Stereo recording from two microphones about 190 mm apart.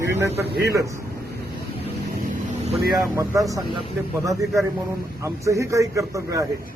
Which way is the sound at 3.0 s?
15° right (ahead or behind).